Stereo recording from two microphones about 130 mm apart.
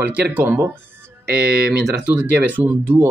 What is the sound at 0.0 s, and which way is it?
Speech, 15° right (ahead or behind).